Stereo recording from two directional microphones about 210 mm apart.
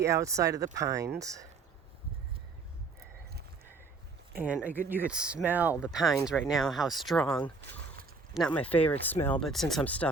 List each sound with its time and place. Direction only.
0.0 s speech: 15° right (ahead or behind)
4.4 s speech: 5° right (ahead or behind)